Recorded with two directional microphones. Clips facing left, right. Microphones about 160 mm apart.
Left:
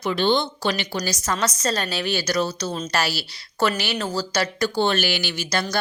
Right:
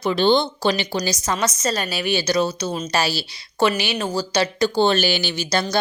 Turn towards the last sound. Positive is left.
turn(degrees=-25)  # may be behind; listen again after turning